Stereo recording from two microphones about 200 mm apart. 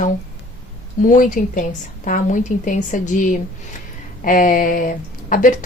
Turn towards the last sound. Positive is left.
turn(degrees=40)  # may be behind; listen again after turning